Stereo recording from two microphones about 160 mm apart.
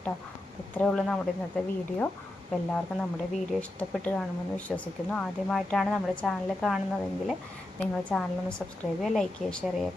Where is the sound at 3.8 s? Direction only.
10° left (ahead or behind).